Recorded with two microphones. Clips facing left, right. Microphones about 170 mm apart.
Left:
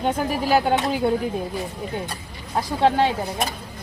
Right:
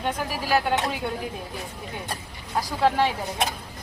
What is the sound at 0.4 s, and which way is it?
Speech, 30° left (ahead or behind).